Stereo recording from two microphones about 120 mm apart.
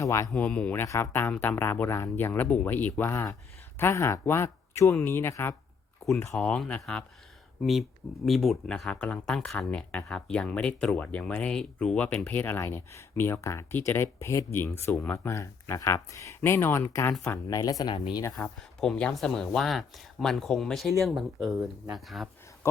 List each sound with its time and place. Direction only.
0.0 s speech: 25° left (ahead or behind)
0.3 s speech: 10° left (ahead or behind)
6.3 s speech: 5° left (ahead or behind)
7.6 s speech: centre (ahead or behind); by 17.9 s 30° left (ahead or behind)
17.9 s speech: 45° left (ahead or behind)
18.8 s speech: 5° left (ahead or behind)
22.6 s a sound: 25° left (ahead or behind)